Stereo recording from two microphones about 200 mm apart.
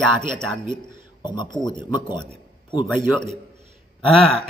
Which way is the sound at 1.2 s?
20° left (ahead or behind).